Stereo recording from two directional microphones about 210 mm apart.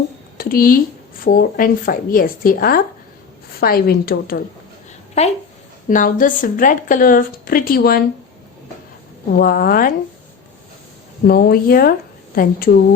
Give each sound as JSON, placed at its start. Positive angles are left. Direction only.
{"t": 0.3, "sound": "a sound", "side_deg": 45}
{"t": 1.2, "sound": "speech", "side_deg": 45}
{"t": 5.2, "sound": "a woman's voice", "side_deg": 30}
{"t": 9.3, "sound": "speech", "side_deg": 45}
{"t": 11.3, "sound": "speech", "side_deg": 45}